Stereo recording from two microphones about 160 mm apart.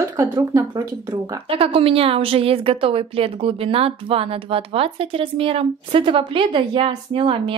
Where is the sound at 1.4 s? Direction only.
35° right (ahead or behind).